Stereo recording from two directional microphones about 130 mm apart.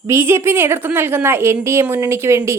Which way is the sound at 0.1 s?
20° right (ahead or behind).